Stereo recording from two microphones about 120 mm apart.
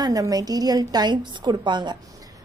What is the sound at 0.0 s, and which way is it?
A woman's voice, 30° right (ahead or behind).